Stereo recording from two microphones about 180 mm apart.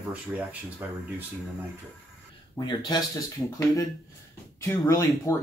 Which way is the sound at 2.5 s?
25° left (ahead or behind).